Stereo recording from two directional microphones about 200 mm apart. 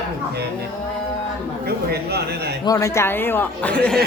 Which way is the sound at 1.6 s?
55° right (ahead or behind).